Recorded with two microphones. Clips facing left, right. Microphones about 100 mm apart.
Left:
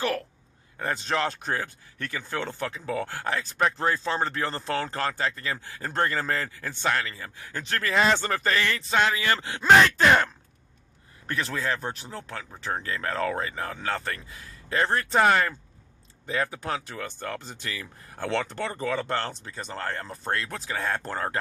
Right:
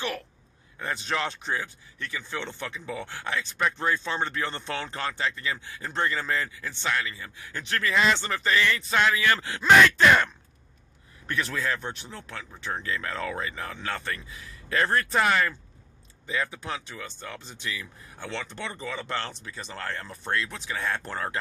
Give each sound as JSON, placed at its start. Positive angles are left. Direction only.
{"t": 0.8, "sound": "speech", "side_deg": 40}
{"t": 14.8, "sound": "speech", "side_deg": 25}
{"t": 18.5, "sound": "speech", "side_deg": 40}